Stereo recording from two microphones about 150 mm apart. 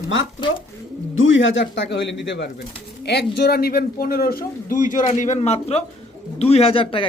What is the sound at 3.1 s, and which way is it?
A man's voice, 90° left.